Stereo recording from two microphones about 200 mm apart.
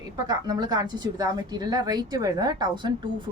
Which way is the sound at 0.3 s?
20° right (ahead or behind).